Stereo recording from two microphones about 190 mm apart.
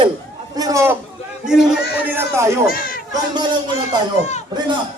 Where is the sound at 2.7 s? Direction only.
50° left (ahead or behind).